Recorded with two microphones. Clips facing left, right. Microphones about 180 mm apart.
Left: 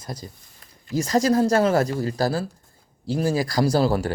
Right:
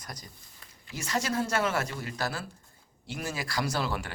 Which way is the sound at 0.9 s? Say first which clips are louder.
Left 11 dB; 35° left (ahead or behind).